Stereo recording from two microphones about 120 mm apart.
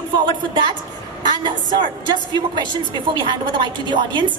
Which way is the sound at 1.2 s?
40° right (ahead or behind).